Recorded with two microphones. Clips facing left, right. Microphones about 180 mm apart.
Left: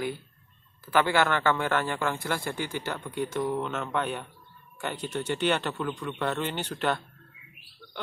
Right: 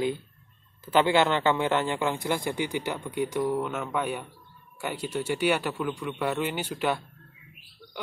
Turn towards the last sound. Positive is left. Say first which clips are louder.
# right 1 dB
turn(degrees=-10)  # may be behind; listen again after turning